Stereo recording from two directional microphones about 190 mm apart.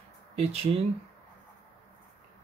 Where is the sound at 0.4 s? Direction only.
30° right (ahead or behind).